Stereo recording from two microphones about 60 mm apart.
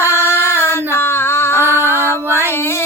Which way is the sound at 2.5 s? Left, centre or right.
Left.